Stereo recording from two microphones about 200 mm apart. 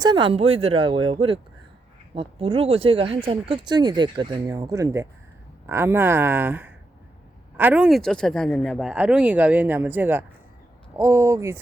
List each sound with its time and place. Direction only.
0.0 s speech: 25° right (ahead or behind)